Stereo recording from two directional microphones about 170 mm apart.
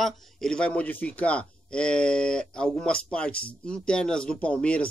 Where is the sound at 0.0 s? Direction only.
5° left (ahead or behind).